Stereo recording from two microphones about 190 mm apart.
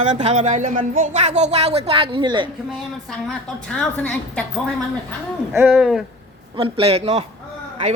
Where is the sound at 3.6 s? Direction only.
5° left (ahead or behind).